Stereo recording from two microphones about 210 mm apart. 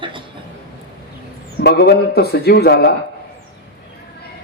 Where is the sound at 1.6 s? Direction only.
50° left (ahead or behind).